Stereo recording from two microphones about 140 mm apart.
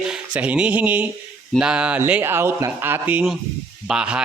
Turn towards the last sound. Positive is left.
turn(degrees=-5)  # may be behind; listen again after turning